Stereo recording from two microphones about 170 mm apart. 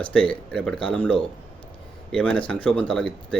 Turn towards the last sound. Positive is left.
turn(degrees=5)  # may be behind; listen again after turning